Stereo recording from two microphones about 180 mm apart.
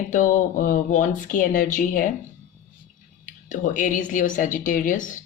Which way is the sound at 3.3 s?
45° left (ahead or behind).